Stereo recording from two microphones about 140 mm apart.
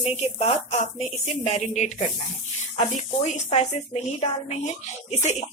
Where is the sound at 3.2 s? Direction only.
55° left (ahead or behind).